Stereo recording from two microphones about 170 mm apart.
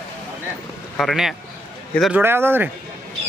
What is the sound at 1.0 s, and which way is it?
Speech, centre (ahead or behind).